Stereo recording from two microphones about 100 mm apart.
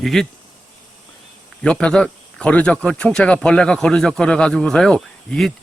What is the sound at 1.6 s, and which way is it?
A man's voice, 10° left (ahead or behind).